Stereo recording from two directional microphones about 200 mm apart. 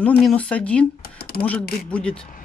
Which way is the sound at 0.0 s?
5° left (ahead or behind).